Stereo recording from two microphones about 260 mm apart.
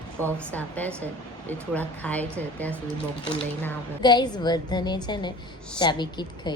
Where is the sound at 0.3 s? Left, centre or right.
Centre.